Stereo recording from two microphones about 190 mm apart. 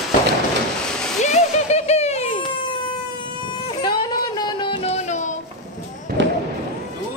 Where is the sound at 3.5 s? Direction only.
25° left (ahead or behind).